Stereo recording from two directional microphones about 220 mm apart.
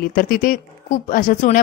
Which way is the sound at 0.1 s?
40° left (ahead or behind).